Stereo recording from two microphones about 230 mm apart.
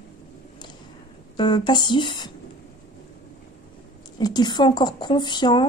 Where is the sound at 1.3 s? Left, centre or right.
Centre.